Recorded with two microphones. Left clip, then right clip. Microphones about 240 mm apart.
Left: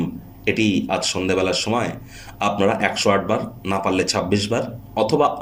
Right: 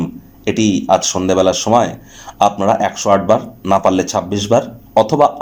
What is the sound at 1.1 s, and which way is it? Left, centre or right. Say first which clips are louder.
Speech: right 7 dB; right.